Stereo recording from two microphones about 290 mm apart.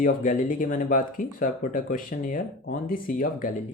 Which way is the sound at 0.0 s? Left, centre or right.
Left.